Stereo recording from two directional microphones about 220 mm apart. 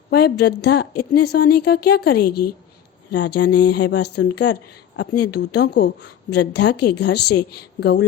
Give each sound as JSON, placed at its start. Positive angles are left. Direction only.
{"t": 0.1, "sound": "a woman's voice", "side_deg": 50}